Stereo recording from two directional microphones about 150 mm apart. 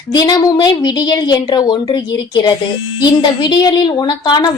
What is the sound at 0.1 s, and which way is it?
A woman's voice, 25° left (ahead or behind).